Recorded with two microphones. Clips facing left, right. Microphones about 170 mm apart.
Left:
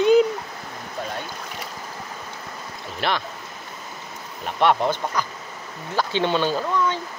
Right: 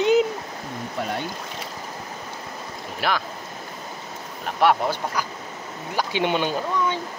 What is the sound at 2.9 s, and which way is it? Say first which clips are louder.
Speech: even; 5° right (ahead or behind).